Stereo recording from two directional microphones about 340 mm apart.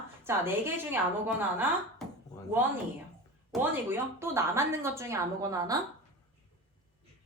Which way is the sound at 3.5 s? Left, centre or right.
Centre.